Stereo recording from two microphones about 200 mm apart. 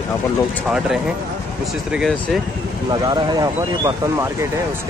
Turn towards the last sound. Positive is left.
turn(degrees=-15)  # may be behind; listen again after turning